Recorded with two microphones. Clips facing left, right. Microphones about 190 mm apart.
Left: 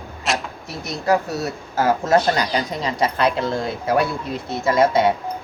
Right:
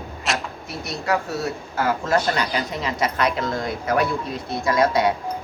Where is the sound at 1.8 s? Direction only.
25° left (ahead or behind).